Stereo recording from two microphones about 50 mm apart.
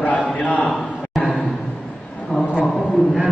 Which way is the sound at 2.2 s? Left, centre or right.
Centre.